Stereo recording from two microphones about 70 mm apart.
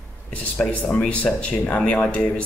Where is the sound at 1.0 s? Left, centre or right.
Centre.